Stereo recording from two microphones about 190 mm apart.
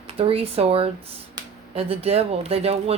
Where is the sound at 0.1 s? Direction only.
30° right (ahead or behind).